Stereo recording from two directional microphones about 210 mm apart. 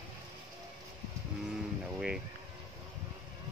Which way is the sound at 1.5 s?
5° right (ahead or behind).